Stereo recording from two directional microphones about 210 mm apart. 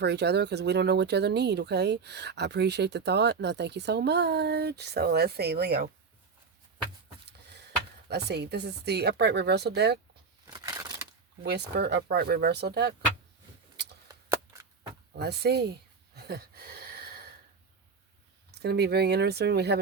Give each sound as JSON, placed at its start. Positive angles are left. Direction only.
{"t": 0.0, "sound": "speech", "side_deg": -55}
{"t": 8.1, "sound": "speech", "side_deg": -50}
{"t": 10.4, "sound": "a sound", "side_deg": -15}
{"t": 11.4, "sound": "speech", "side_deg": -50}
{"t": 15.1, "sound": "a sound", "side_deg": -50}
{"t": 18.5, "sound": "speech", "side_deg": -50}